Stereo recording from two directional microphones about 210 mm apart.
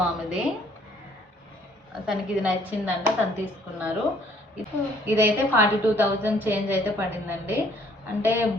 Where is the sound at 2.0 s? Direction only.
5° right (ahead or behind).